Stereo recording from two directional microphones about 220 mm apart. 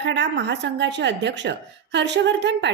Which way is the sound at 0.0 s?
50° right (ahead or behind).